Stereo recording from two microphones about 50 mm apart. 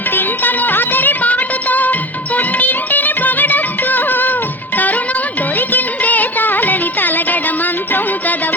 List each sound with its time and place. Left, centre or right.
0.1 s music: left
5.5 s music: left